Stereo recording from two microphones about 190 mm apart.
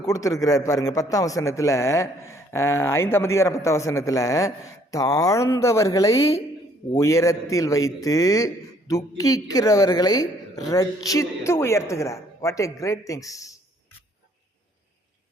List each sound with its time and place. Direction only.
0.0 s a man's voice: 15° left (ahead or behind)